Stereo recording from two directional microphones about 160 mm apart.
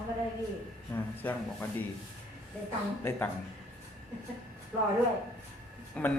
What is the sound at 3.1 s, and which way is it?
Speech, 15° left (ahead or behind).